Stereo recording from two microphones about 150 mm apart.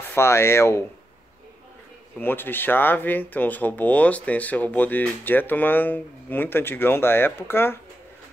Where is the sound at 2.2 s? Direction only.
15° left (ahead or behind).